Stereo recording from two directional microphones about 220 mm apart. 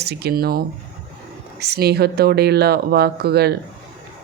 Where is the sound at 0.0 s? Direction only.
50° right (ahead or behind).